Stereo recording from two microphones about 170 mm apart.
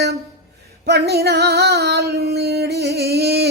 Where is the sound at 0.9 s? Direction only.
70° right (ahead or behind).